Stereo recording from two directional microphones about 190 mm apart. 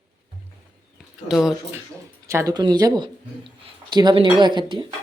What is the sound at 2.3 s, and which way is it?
Speech, 15° right (ahead or behind).